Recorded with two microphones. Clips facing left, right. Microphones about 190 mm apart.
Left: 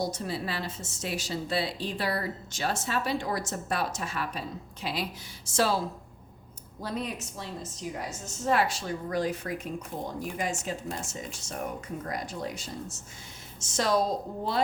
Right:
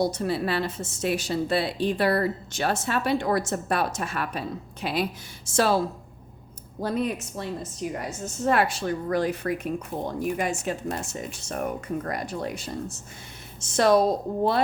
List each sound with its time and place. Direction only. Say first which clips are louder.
0.0 s a woman's voice: right 7 dB; 65° right (ahead or behind)
6.8 s a woman's voice: right 7 dB; 55° right (ahead or behind)